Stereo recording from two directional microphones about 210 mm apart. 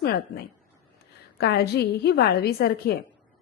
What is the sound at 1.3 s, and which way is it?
A woman's voice, 50° left (ahead or behind).